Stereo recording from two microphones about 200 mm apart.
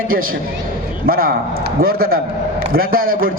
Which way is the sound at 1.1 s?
45° right (ahead or behind).